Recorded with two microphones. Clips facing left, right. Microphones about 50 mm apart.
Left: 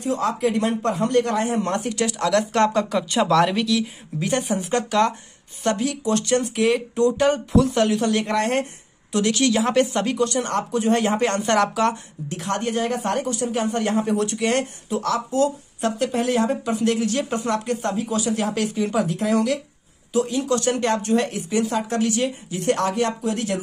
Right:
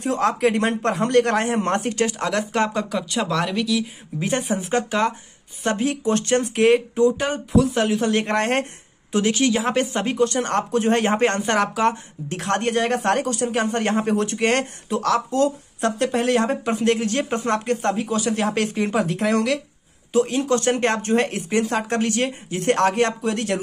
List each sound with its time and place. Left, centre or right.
0.0 s speech: right
1.6 s speech: right
2.5 s speech: centre
4.2 s speech: centre
5.9 s speech: right
7.0 s speech: centre
8.1 s speech: right
9.1 s speech: right
10.3 s speech: right
11.4 s speech: centre
12.3 s speech: right
20.1 s speech: right